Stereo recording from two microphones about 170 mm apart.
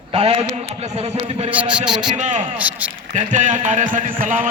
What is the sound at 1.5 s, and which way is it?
Speech, 5° right (ahead or behind).